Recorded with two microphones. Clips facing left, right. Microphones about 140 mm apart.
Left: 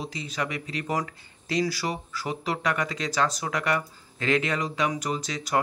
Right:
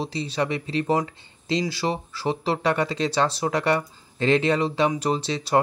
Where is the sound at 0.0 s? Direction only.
30° right (ahead or behind).